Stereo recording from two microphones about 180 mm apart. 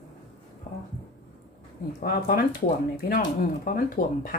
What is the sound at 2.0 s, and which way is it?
A woman's voice, 55° left (ahead or behind).